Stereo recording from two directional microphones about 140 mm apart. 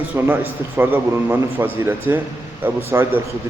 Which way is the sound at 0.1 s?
15° right (ahead or behind).